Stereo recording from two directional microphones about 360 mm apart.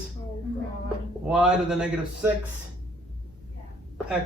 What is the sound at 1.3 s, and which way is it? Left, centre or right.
Speech, centre.